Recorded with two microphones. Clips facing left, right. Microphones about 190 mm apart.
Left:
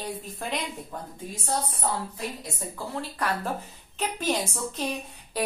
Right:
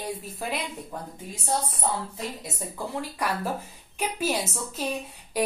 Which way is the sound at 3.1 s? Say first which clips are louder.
Left 1 dB; 10° right (ahead or behind).